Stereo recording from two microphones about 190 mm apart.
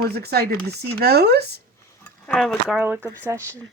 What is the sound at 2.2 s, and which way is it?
Speech, 5° left (ahead or behind).